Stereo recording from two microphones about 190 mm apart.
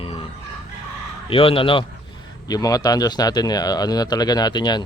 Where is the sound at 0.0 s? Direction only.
30° left (ahead or behind).